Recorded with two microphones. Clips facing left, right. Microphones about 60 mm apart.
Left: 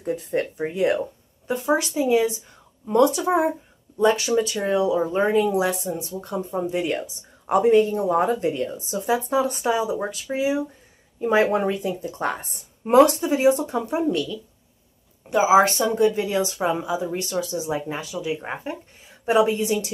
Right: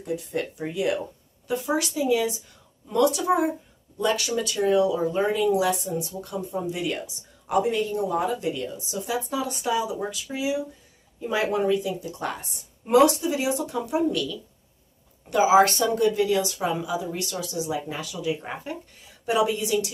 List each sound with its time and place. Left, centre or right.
0.0 s speech: left
15.2 s speech: centre